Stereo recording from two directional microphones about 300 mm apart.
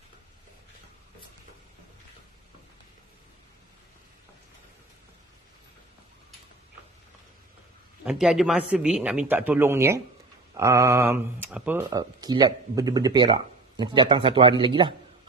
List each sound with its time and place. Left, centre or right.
8.0 s speech: centre